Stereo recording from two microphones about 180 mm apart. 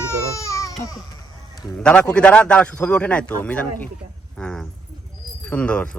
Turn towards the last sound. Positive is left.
turn(degrees=5)  # may be behind; listen again after turning